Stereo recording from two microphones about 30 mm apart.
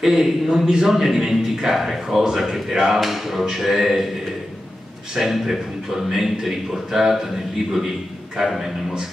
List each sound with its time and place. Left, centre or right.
0.0 s a man's voice: centre
5.1 s a man's voice: centre